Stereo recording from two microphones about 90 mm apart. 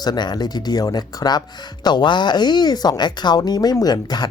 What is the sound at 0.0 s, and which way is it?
Speech, 50° left (ahead or behind).